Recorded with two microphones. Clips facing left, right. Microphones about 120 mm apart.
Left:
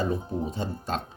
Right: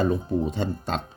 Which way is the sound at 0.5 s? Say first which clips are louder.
Right 3 dB; 85° right.